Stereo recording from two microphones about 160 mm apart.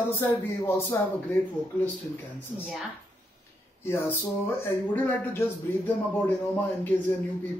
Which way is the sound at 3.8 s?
15° left (ahead or behind).